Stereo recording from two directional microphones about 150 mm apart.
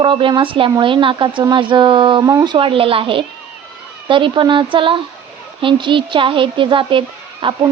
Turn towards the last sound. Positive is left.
turn(degrees=-35)  # may be behind; listen again after turning